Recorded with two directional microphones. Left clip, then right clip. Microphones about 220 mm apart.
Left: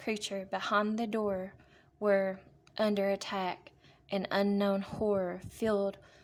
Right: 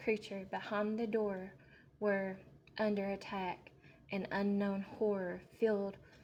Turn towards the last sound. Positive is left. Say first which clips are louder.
# left 4 dB
turn(degrees=30)  # may be behind; listen again after turning